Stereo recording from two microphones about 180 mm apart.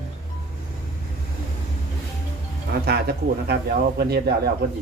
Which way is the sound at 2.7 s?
65° right (ahead or behind).